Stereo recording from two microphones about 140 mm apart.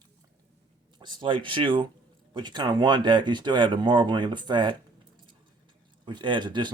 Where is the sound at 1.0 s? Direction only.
30° right (ahead or behind).